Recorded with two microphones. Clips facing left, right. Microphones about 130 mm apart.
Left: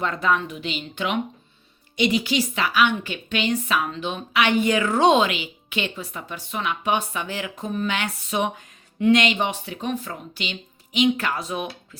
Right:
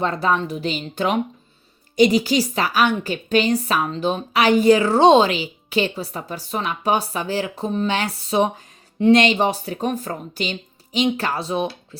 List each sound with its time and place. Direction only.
0.0 s a woman's voice: 35° right (ahead or behind)